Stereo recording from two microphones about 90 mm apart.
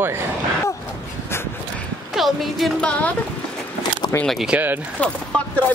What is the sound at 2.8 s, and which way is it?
Speech, 15° left (ahead or behind).